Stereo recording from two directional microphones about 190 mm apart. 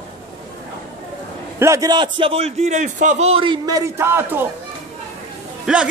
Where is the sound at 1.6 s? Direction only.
15° right (ahead or behind).